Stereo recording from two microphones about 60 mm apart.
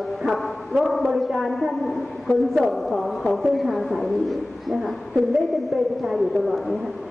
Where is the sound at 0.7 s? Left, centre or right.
Centre.